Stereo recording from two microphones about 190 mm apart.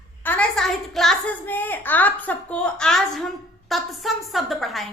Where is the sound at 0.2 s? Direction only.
10° left (ahead or behind).